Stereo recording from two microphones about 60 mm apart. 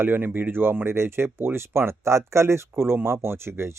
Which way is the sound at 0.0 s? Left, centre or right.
Right.